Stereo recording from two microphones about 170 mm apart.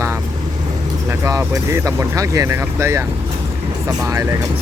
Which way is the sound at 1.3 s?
20° right (ahead or behind).